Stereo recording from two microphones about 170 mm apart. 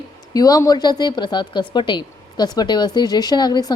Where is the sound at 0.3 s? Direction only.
20° left (ahead or behind).